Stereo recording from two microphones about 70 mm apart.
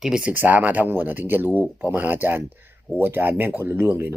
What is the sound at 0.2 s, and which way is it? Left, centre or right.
Speech, right.